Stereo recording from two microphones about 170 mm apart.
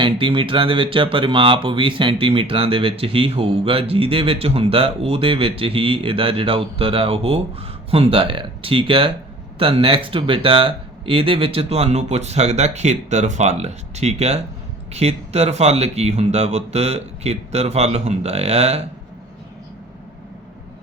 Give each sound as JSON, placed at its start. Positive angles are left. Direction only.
{"t": 0.0, "sound": "speech", "side_deg": -30}